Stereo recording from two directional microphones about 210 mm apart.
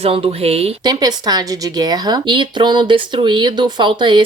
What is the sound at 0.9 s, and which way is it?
A woman's voice, 20° right (ahead or behind).